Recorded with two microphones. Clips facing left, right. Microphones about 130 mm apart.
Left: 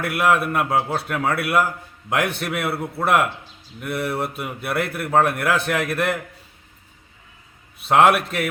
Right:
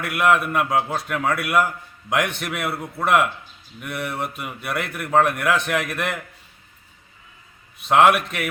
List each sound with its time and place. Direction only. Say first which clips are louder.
0.2 s a man's voice: right 1 dB; 5° left (ahead or behind)
2.7 s a man's voice: left 3 dB; 30° left (ahead or behind)
3.0 s a man's voice: even; 5° left (ahead or behind)
7.9 s a man's voice: even; centre (ahead or behind)